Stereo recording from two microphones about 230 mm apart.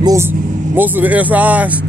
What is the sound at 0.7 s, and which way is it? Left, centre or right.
Speech, centre.